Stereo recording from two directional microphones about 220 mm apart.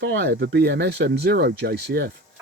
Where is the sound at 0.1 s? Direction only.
50° right (ahead or behind).